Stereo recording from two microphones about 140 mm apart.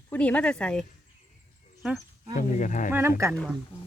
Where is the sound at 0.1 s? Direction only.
10° left (ahead or behind).